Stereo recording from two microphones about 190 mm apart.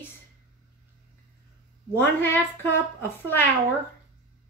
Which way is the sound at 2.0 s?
10° left (ahead or behind).